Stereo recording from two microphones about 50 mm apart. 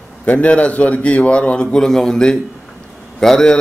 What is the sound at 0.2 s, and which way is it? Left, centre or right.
A man's voice, left.